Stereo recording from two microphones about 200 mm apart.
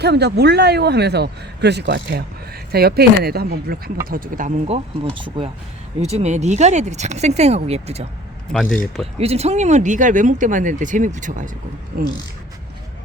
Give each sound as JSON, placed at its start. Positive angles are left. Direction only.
{"t": 0.0, "sound": "a man's voice", "side_deg": -55}
{"t": 8.5, "sound": "speech", "side_deg": 5}
{"t": 9.1, "sound": "speech", "side_deg": -30}